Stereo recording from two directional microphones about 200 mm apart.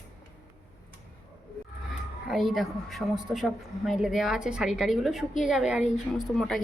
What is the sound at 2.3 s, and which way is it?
A woman's voice, centre (ahead or behind).